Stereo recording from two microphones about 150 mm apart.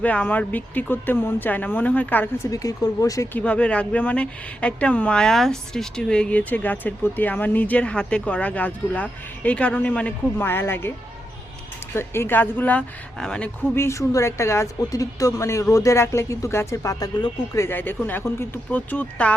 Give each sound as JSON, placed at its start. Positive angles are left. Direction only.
{"t": 0.0, "sound": "a woman's voice", "side_deg": 10}
{"t": 3.3, "sound": "a woman's voice", "side_deg": 10}
{"t": 11.9, "sound": "a woman's voice", "side_deg": 15}
{"t": 13.7, "sound": "speech", "side_deg": 20}
{"t": 17.6, "sound": "a woman's voice", "side_deg": 15}